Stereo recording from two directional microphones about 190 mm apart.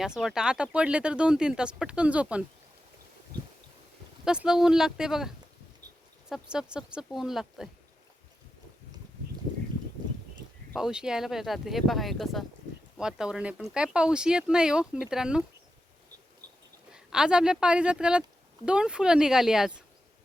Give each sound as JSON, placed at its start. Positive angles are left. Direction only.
{"t": 0.0, "sound": "speech", "side_deg": 0}
{"t": 4.3, "sound": "speech", "side_deg": -5}
{"t": 10.8, "sound": "speech", "side_deg": -5}
{"t": 16.9, "sound": "speech", "side_deg": -5}